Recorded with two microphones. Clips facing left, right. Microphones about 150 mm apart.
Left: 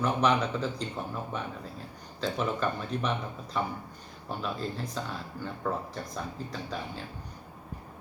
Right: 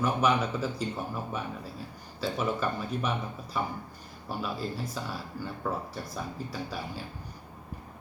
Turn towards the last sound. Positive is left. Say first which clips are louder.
# even
turn(degrees=-5)  # may be behind; listen again after turning